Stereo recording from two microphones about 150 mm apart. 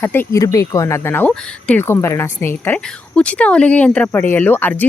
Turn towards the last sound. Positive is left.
turn(degrees=10)  # may be behind; listen again after turning